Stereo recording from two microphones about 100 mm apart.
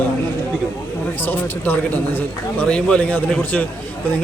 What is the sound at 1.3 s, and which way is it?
Speech, 20° left (ahead or behind).